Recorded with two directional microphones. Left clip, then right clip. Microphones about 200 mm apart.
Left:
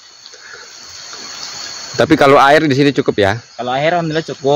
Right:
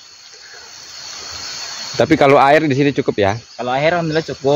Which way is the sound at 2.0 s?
20° left (ahead or behind).